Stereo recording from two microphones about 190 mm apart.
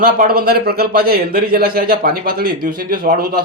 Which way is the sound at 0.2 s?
55° right (ahead or behind).